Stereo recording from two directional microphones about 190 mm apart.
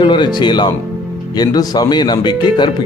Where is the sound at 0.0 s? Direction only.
25° left (ahead or behind).